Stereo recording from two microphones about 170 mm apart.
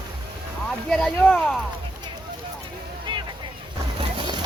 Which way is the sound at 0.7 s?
5° left (ahead or behind).